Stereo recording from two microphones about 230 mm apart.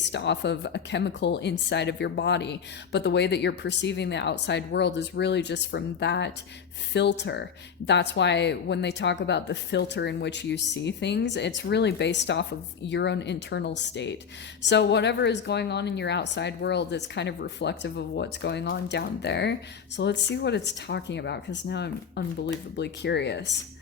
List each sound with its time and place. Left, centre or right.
0.1 s speech: left